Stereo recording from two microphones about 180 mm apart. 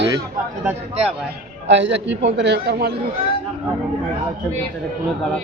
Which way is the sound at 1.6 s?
85° right.